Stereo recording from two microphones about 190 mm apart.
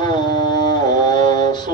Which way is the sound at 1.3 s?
25° left (ahead or behind).